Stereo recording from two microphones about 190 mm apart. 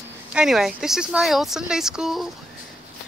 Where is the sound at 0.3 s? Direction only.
5° right (ahead or behind).